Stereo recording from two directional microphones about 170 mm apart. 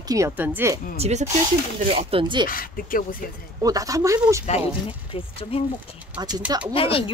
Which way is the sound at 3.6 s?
20° right (ahead or behind).